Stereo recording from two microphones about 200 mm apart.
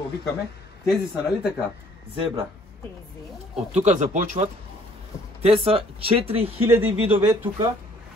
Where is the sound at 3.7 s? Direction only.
35° right (ahead or behind).